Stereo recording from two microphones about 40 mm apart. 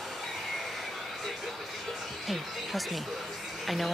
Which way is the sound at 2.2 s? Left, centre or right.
Centre.